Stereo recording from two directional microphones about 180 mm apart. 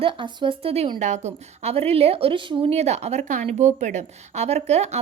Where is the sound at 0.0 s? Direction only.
30° right (ahead or behind).